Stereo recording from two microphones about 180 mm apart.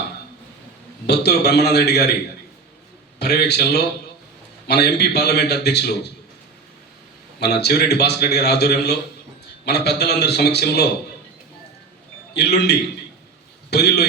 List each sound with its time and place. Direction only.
1.0 s a man's voice: 65° left (ahead or behind)
3.2 s a man's voice: 65° left (ahead or behind)
7.3 s a man's voice: 65° left (ahead or behind)
12.4 s a man's voice: 65° left (ahead or behind)